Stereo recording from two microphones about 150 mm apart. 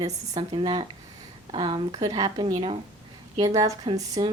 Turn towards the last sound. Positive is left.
turn(degrees=-30)  # may be behind; listen again after turning